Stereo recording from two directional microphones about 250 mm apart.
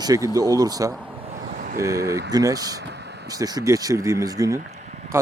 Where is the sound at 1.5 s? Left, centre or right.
Right.